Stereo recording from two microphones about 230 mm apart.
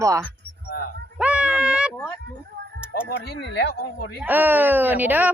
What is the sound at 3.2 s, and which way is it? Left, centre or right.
Speech, left.